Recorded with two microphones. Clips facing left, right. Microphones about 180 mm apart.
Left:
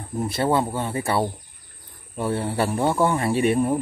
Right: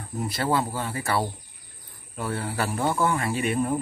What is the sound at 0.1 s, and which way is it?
Speech, 25° left (ahead or behind).